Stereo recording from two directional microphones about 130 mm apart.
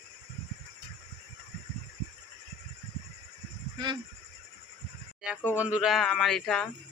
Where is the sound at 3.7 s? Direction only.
35° right (ahead or behind).